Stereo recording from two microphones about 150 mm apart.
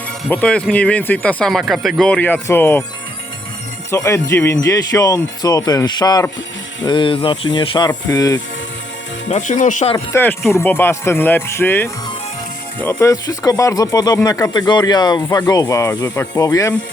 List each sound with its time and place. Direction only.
0.3 s speech: 5° left (ahead or behind)
3.9 s speech: 20° left (ahead or behind)
9.3 s speech: 55° left (ahead or behind)
10.1 s speech: 15° left (ahead or behind)